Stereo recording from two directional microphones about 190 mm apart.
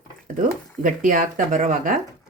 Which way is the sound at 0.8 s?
45° right (ahead or behind).